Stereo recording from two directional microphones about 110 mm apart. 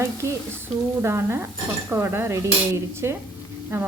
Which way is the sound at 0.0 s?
25° right (ahead or behind).